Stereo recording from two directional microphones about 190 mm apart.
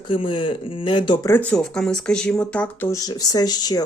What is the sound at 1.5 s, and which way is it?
Speech, 5° left (ahead or behind).